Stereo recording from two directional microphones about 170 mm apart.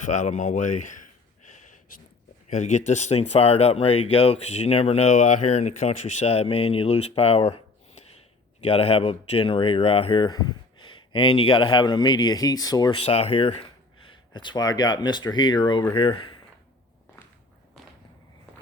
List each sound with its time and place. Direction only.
0.0 s speech: 45° left (ahead or behind)
1.5 s a sound: 45° left (ahead or behind)
2.5 s speech: 45° left (ahead or behind); by 13.0 s 25° left (ahead or behind)
13.1 s speech: 35° left (ahead or behind)